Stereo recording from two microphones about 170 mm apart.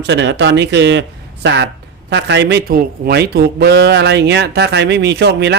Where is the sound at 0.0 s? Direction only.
90° right.